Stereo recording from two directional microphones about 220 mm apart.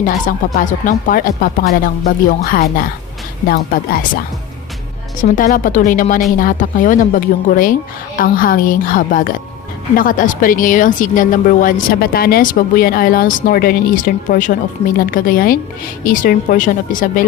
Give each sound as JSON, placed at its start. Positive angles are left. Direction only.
{"t": 0.0, "sound": "a woman's voice", "side_deg": 35}
{"t": 5.4, "sound": "a woman's voice", "side_deg": 40}